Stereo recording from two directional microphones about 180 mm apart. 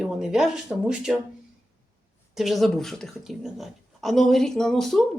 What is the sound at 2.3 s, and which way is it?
A woman's voice, centre (ahead or behind).